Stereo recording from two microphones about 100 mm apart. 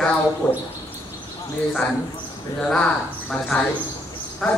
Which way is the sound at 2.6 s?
5° left (ahead or behind).